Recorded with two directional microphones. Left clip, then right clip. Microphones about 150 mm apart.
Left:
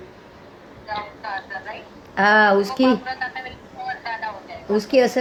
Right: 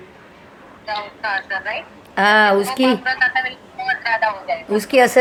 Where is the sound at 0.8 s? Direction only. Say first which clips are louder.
Right 6 dB; 80° right.